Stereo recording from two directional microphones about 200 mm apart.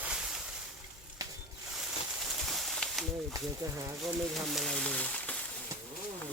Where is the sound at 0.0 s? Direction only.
5° right (ahead or behind).